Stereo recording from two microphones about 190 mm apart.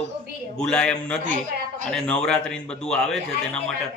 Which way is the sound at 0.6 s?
5° left (ahead or behind).